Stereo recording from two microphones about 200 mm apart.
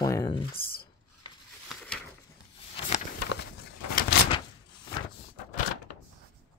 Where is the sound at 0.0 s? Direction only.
20° left (ahead or behind).